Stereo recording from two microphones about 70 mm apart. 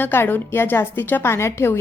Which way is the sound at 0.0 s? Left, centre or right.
Left.